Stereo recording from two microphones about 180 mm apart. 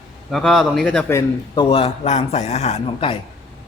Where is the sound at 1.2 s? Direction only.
25° left (ahead or behind).